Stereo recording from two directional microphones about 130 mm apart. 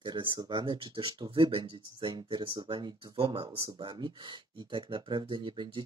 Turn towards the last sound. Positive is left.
turn(degrees=-35)  # may be behind; listen again after turning